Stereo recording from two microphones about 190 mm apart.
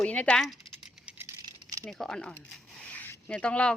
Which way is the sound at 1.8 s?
5° left (ahead or behind).